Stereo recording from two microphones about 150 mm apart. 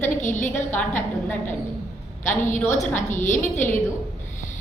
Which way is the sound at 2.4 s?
55° left (ahead or behind).